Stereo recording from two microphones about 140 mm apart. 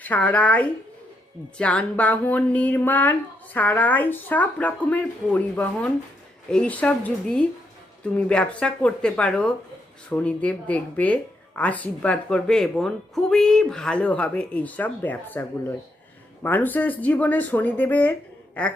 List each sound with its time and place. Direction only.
0.0 s speech: 10° left (ahead or behind)